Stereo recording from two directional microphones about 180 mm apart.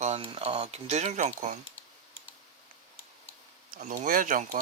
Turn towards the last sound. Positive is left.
turn(degrees=-50)  # may be behind; listen again after turning